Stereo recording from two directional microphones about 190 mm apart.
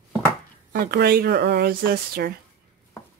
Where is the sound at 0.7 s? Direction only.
55° right (ahead or behind).